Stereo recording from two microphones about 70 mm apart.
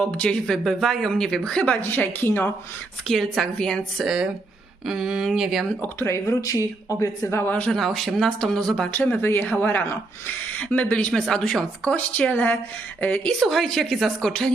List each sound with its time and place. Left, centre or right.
0.0 s a woman's voice: centre
1.9 s speech: left
3.1 s a woman's voice: centre
4.0 s speech: centre
5.8 s speech: left
7.7 s a woman's voice: centre
8.9 s speech: left
10.6 s speech: centre
11.1 s a woman's voice: centre
11.9 s speech: left
13.1 s a woman's voice: centre